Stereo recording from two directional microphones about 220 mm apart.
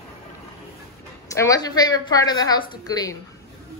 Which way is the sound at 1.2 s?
15° left (ahead or behind).